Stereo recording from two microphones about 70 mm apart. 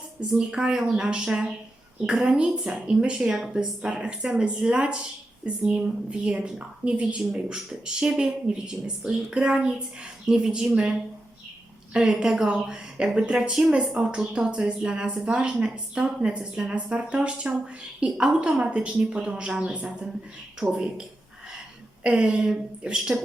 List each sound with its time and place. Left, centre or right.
0.2 s speech: centre
11.9 s speech: centre